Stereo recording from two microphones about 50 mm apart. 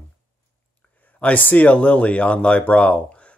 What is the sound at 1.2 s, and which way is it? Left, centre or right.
Speech, left.